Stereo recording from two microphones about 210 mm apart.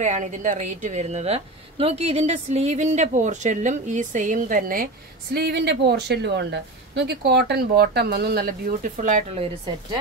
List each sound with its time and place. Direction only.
0.0 s a woman's voice: 35° right (ahead or behind)